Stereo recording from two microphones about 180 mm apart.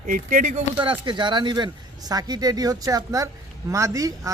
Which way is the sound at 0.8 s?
25° right (ahead or behind).